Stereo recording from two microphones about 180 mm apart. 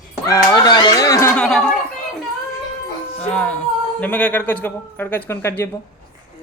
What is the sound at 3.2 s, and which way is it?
Speech, 5° left (ahead or behind).